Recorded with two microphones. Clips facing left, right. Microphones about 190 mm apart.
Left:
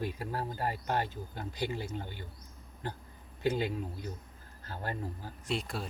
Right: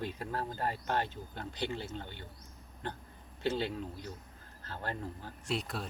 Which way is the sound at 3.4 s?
10° left (ahead or behind).